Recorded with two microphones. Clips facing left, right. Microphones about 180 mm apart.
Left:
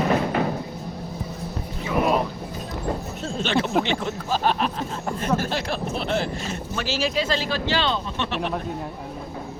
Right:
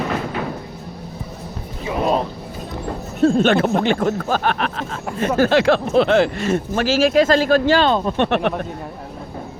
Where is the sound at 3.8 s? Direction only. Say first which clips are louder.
Right 8 dB; 55° right (ahead or behind).